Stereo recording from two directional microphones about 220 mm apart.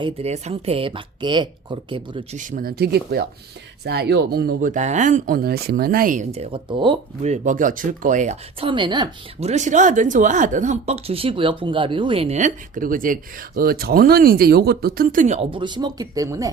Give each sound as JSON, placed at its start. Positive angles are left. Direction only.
{"t": 0.0, "sound": "speech", "side_deg": -30}
{"t": 2.4, "sound": "speech", "side_deg": -40}